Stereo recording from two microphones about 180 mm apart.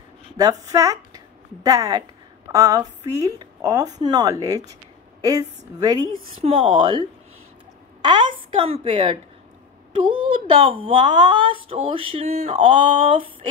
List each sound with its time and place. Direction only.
0.4 s a woman's voice: 20° right (ahead or behind)
10.4 s a woman's voice: 30° right (ahead or behind)